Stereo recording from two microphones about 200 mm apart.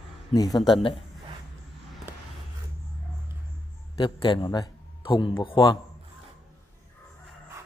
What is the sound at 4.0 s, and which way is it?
A man's voice, 25° left (ahead or behind).